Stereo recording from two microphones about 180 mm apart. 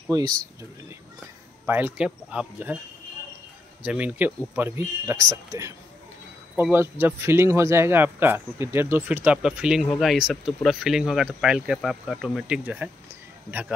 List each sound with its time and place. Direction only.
0.1 s speech: 20° right (ahead or behind)
1.7 s speech: 10° right (ahead or behind)
3.8 s speech: 10° right (ahead or behind)